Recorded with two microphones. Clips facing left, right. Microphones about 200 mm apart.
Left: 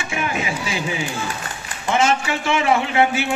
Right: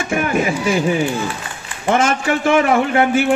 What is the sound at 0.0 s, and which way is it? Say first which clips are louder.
A man's voice: right 7 dB; 50° right (ahead or behind).